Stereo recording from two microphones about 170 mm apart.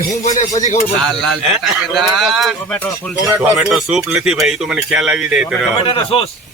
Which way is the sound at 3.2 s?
10° right (ahead or behind).